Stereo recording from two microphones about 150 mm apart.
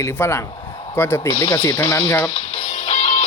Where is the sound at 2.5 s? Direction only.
45° left (ahead or behind).